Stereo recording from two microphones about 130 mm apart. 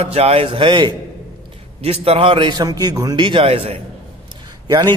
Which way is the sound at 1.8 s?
50° right (ahead or behind).